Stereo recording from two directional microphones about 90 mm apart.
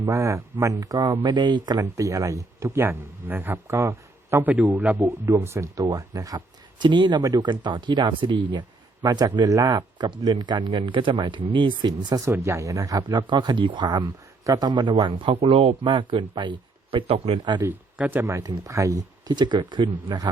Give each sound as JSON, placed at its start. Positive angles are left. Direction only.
{"t": 0.0, "sound": "a man's voice", "side_deg": -35}
{"t": 1.2, "sound": "speech", "side_deg": -55}
{"t": 1.8, "sound": "a man's voice", "side_deg": -35}
{"t": 4.5, "sound": "a man's voice", "side_deg": -15}
{"t": 5.0, "sound": "a man's voice", "side_deg": -30}
{"t": 9.5, "sound": "a man's voice", "side_deg": -40}
{"t": 9.7, "sound": "speech", "side_deg": -55}
{"t": 12.2, "sound": "speech", "side_deg": -35}
{"t": 14.7, "sound": "speech", "side_deg": -55}
{"t": 17.9, "sound": "speech", "side_deg": -15}
{"t": 18.2, "sound": "a man's voice", "side_deg": -30}
{"t": 19.4, "sound": "speech", "side_deg": -60}